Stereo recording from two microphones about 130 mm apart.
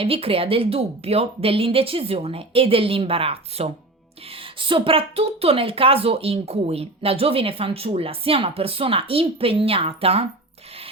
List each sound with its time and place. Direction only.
0.0 s speech: 45° right (ahead or behind)